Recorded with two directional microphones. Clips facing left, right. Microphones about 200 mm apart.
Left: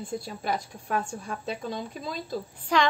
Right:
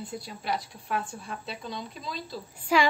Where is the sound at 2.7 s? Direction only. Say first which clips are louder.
Right 1 dB; 5° right (ahead or behind).